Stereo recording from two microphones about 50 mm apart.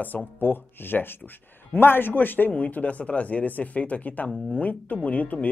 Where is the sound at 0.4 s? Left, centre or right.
Left.